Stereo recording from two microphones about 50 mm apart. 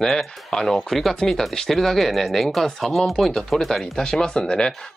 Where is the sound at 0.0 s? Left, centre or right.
Centre.